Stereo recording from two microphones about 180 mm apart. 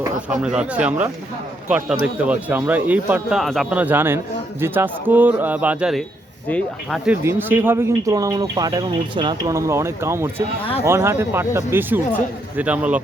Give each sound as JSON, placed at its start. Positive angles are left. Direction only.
{"t": 0.3, "sound": "speech", "side_deg": -5}